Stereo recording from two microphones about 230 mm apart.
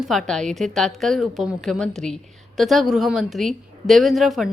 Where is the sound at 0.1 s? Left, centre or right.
Centre.